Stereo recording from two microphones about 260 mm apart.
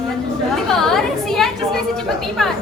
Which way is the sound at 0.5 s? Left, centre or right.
Centre.